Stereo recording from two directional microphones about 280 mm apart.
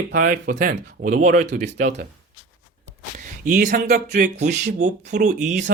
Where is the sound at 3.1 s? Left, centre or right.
Right.